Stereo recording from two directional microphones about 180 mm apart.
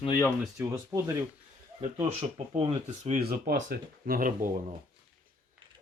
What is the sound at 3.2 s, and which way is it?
Speech, 55° right (ahead or behind).